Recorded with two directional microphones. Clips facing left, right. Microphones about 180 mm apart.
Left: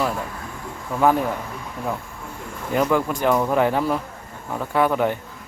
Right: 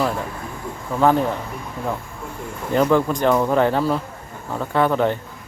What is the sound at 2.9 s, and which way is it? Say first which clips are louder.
Speech: right 2 dB; 10° left (ahead or behind).